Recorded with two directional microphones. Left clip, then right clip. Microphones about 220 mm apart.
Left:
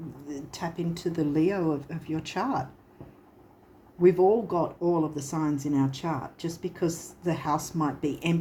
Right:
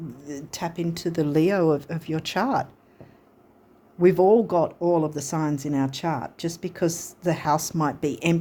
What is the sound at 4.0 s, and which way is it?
Speech, 50° right (ahead or behind).